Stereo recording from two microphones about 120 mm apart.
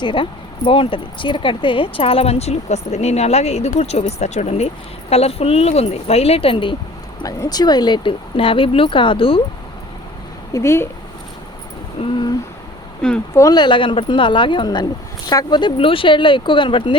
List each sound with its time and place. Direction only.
0.0 s speech: 40° left (ahead or behind)
7.2 s speech: 30° left (ahead or behind); by 9.4 s 50° left (ahead or behind)
10.5 s speech: 25° left (ahead or behind)
13.3 s speech: 30° left (ahead or behind)